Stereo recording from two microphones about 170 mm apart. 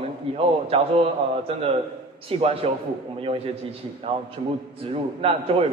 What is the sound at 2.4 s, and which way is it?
Speech, 35° right (ahead or behind).